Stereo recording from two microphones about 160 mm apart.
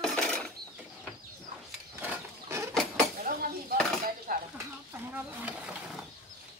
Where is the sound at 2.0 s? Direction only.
15° right (ahead or behind).